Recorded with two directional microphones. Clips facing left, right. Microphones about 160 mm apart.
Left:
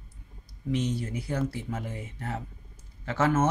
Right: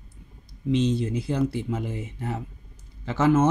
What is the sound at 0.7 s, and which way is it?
Speech, 25° right (ahead or behind).